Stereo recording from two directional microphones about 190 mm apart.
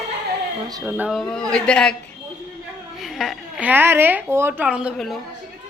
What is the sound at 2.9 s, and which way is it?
A woman's voice, centre (ahead or behind).